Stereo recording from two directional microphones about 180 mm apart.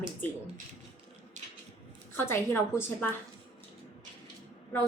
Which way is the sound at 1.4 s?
40° right (ahead or behind).